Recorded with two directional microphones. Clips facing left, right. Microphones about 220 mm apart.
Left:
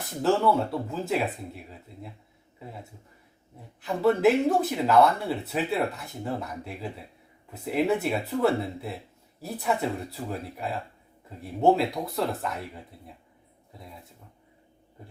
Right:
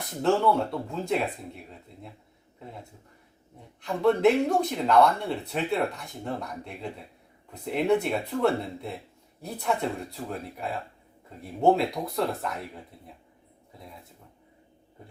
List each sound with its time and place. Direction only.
0.2 s speech: centre (ahead or behind)
3.8 s speech: 5° left (ahead or behind)